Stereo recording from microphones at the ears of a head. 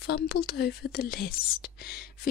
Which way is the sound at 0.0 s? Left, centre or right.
Left.